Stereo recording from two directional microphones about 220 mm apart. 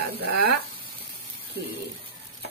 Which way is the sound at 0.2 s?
45° right (ahead or behind).